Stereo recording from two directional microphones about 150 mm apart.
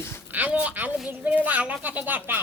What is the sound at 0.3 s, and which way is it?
Speech, 10° right (ahead or behind).